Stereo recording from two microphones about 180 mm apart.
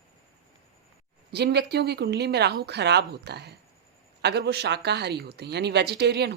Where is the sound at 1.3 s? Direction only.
65° right (ahead or behind).